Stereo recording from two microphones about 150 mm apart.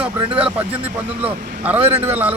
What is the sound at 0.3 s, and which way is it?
Speech, 10° right (ahead or behind).